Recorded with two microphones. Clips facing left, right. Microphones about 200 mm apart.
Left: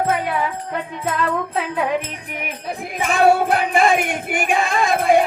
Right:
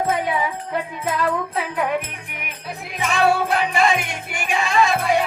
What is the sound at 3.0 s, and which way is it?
Music, 50° left (ahead or behind).